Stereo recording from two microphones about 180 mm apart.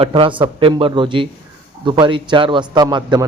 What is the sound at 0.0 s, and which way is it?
A man's voice, 30° right (ahead or behind).